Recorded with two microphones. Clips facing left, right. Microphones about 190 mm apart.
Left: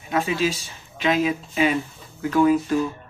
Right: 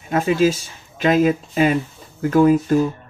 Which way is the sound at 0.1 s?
45° right (ahead or behind).